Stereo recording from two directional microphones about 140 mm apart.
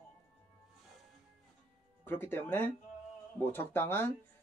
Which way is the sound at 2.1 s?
15° left (ahead or behind).